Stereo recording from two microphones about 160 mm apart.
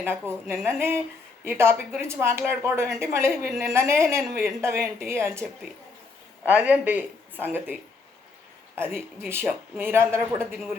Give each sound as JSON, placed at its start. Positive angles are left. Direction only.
{"t": 0.0, "sound": "a woman's voice", "side_deg": -15}
{"t": 6.5, "sound": "a woman's voice", "side_deg": -10}
{"t": 9.0, "sound": "a woman's voice", "side_deg": -15}